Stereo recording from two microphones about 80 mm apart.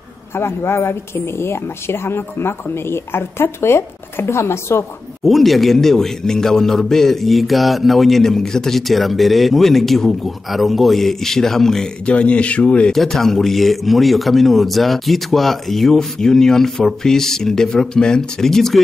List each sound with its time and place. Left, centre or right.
0.3 s speech: left
5.2 s a man's voice: centre
12.9 s a man's voice: centre